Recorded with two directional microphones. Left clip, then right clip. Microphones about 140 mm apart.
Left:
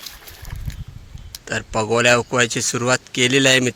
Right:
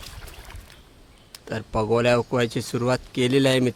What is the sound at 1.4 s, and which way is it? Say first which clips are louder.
Speech: left 3 dB; 10° right (ahead or behind).